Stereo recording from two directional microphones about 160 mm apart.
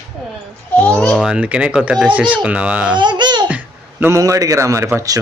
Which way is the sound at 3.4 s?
10° right (ahead or behind).